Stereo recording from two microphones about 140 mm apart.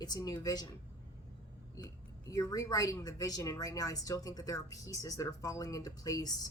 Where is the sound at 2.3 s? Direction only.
25° left (ahead or behind).